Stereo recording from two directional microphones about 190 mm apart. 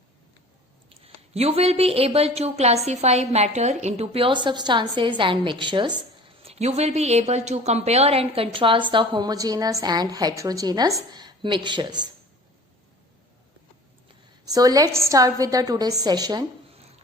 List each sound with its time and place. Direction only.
0.9 s a woman's voice: 30° right (ahead or behind)
14.4 s a woman's voice: 20° right (ahead or behind)